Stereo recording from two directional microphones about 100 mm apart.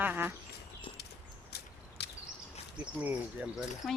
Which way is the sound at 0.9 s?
60° left (ahead or behind).